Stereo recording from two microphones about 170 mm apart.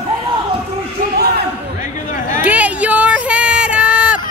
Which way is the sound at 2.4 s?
10° right (ahead or behind).